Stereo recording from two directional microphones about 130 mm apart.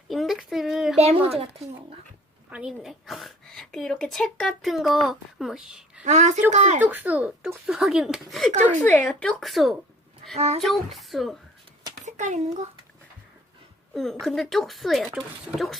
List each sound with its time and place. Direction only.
0.1 s a sound: centre (ahead or behind)
0.9 s a woman's voice: 50° right (ahead or behind)
2.5 s a woman's voice: 5° right (ahead or behind)
6.1 s a woman's voice: 65° right (ahead or behind)
6.8 s a woman's voice: 15° right (ahead or behind)
8.8 s speech: 15° left (ahead or behind)
9.4 s a woman's voice: centre (ahead or behind)
10.3 s a woman's voice: 55° right (ahead or behind)
10.6 s a woman's voice: centre (ahead or behind)
12.0 s a child's voice: 65° right (ahead or behind)
13.9 s a woman's voice: centre (ahead or behind)